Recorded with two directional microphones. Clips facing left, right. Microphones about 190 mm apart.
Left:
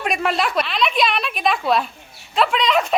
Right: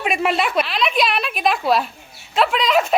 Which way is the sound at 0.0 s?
5° right (ahead or behind).